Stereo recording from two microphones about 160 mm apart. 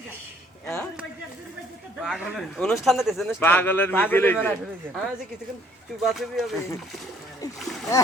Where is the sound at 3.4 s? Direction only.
10° left (ahead or behind).